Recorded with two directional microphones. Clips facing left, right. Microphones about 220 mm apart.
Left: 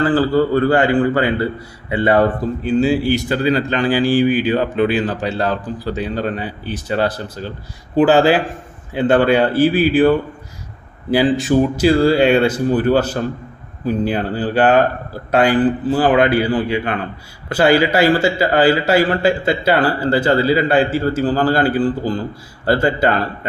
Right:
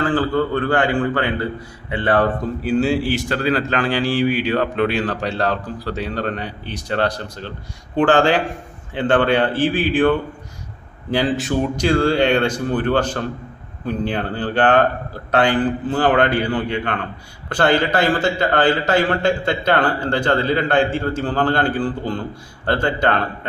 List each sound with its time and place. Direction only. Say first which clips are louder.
0.0 s speech: left 4 dB; 5° left (ahead or behind)
2.6 s speech: left 3 dB; centre (ahead or behind)